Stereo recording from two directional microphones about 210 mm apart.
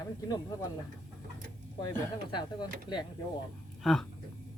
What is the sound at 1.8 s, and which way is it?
Speech, 20° left (ahead or behind).